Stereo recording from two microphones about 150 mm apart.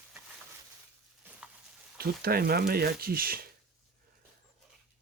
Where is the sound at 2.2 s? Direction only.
90° right.